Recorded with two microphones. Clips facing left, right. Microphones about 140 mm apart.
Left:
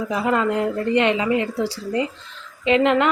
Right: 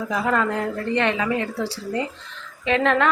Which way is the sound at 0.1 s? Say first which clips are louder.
Left 2 dB; 15° left (ahead or behind).